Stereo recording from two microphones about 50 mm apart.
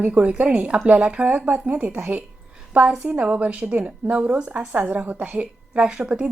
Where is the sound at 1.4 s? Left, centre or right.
Right.